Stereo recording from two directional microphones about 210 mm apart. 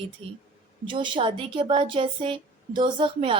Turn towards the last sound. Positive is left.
turn(degrees=-20)  # may be behind; listen again after turning